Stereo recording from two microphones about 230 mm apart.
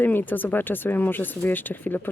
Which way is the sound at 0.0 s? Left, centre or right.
Centre.